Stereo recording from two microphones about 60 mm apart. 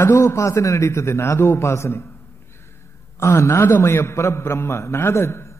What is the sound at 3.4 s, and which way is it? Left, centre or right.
A man's voice, left.